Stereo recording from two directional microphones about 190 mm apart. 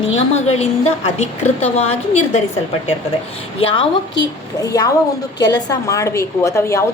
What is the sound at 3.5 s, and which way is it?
A woman's voice, 25° left (ahead or behind).